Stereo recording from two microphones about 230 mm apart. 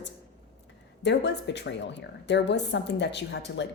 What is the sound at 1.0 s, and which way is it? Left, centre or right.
Speech, left.